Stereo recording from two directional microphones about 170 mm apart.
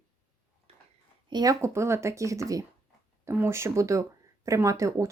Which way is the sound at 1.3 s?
25° right (ahead or behind).